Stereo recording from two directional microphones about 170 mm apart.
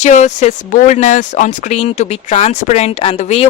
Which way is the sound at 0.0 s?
45° left (ahead or behind).